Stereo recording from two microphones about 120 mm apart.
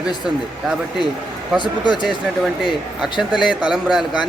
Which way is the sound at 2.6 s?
5° right (ahead or behind).